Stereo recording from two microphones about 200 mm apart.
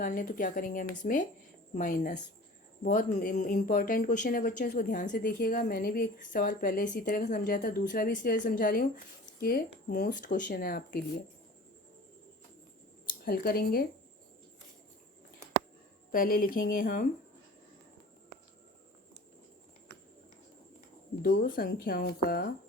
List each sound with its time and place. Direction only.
0.0 s speech: 40° left (ahead or behind)
13.2 s speech: 50° left (ahead or behind)
16.1 s speech: 45° left (ahead or behind)
21.4 s speech: 45° left (ahead or behind)